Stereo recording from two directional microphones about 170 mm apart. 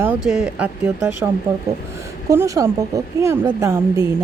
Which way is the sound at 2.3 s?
15° right (ahead or behind).